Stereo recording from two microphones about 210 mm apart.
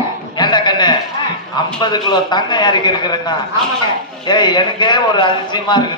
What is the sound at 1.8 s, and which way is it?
A man's voice, 20° left (ahead or behind).